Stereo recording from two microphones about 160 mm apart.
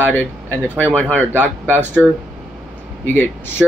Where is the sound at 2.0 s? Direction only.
Centre (ahead or behind).